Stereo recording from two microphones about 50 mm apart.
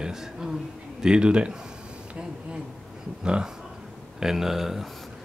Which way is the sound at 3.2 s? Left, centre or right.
Centre.